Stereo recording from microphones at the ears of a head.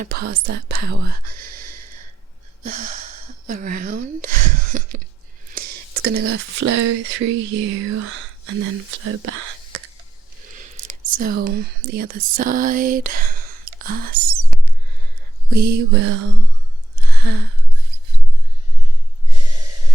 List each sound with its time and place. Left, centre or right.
0.0 s speech: right
15.4 s mantra: right
16.9 s a sound: right